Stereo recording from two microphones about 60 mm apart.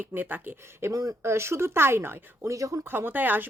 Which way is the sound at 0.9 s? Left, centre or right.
Right.